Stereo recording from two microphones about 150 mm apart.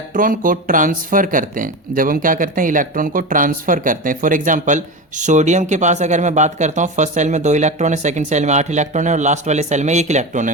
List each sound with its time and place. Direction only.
0.1 s speech: 65° right (ahead or behind)